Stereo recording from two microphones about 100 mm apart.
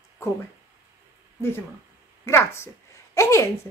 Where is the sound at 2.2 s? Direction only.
25° left (ahead or behind).